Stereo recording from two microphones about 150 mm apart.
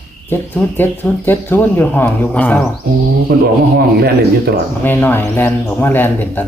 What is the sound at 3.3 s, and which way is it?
Speech, 90° right.